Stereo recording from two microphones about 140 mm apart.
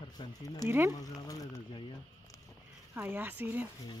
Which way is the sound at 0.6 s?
15° right (ahead or behind).